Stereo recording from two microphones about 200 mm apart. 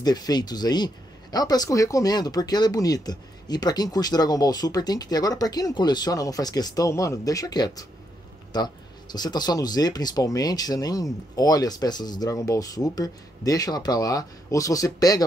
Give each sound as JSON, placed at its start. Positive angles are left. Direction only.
{"t": 0.0, "sound": "speech", "side_deg": 20}